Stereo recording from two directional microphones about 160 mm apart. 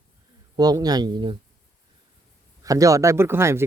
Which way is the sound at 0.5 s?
25° right (ahead or behind).